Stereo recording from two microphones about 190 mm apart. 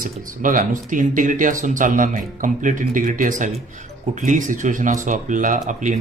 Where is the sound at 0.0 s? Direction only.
45° right (ahead or behind).